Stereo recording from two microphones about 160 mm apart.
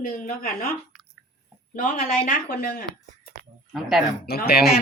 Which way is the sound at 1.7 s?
60° left (ahead or behind).